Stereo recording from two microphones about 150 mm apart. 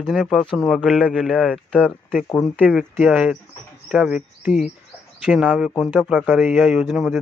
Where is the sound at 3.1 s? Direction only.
10° right (ahead or behind).